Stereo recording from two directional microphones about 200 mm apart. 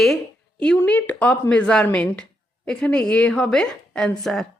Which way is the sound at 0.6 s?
5° left (ahead or behind).